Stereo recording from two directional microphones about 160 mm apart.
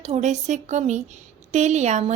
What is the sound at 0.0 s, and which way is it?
A woman's voice, 45° right (ahead or behind).